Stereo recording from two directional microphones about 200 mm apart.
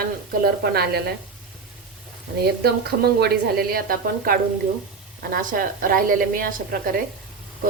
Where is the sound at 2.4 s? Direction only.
50° right (ahead or behind).